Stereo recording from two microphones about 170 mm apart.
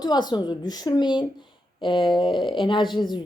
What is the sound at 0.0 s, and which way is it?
Speech, 25° left (ahead or behind).